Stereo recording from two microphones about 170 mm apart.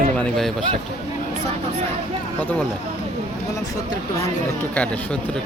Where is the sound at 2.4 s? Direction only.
10° left (ahead or behind).